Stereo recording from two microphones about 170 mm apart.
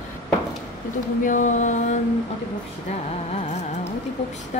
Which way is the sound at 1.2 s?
50° left (ahead or behind).